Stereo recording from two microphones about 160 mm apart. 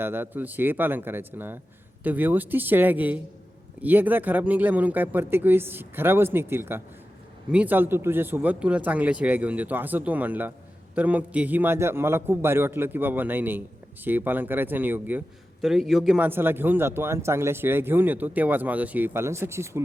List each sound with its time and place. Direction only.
0.0 s a man's voice: 15° right (ahead or behind)